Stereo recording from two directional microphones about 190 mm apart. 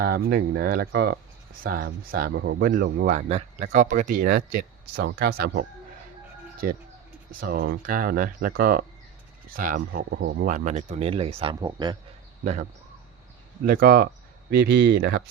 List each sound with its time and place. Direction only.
0.0 s speech: 55° right (ahead or behind)
4.9 s speech: 60° right (ahead or behind)
7.3 s speech: 50° right (ahead or behind)
10.2 s a man's voice: 55° right (ahead or behind); by 11.9 s 20° right (ahead or behind)
13.7 s speech: 50° right (ahead or behind)